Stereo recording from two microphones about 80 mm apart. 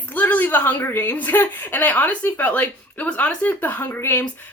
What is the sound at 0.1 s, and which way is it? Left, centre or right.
A woman's voice, left.